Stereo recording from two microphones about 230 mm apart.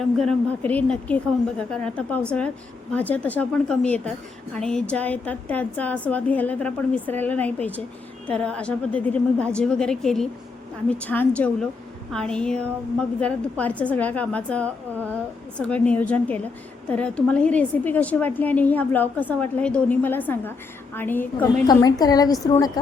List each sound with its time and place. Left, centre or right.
0.0 s a woman's voice: centre